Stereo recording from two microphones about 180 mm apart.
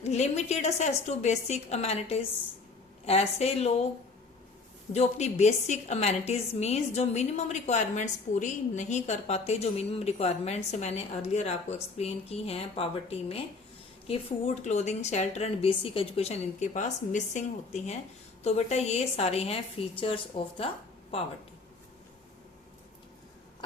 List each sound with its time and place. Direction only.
0.0 s a woman's voice: 40° left (ahead or behind)
4.9 s a woman's voice: 40° left (ahead or behind)